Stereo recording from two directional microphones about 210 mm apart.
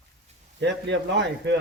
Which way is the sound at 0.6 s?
55° right (ahead or behind).